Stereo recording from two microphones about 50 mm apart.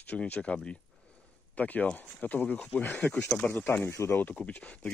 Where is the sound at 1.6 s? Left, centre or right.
Left.